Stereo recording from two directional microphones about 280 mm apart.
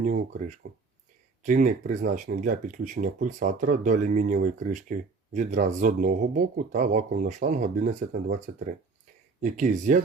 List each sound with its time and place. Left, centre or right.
0.0 s speech: right